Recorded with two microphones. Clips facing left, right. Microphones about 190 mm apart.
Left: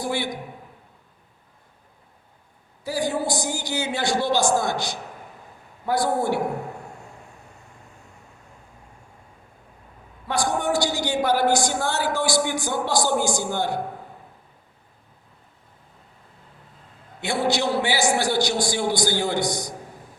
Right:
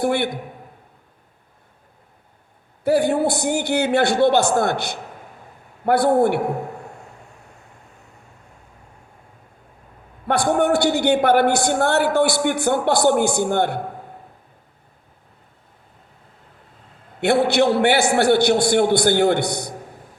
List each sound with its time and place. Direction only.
0.0 s a man's voice: 60° right (ahead or behind)
2.8 s a man's voice: 60° right (ahead or behind)
10.2 s a man's voice: 60° right (ahead or behind)
17.2 s a man's voice: 60° right (ahead or behind)